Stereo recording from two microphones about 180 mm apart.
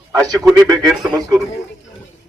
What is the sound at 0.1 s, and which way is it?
Speech, 20° right (ahead or behind).